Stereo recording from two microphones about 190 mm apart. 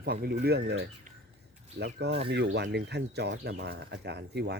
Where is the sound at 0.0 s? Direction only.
55° right (ahead or behind).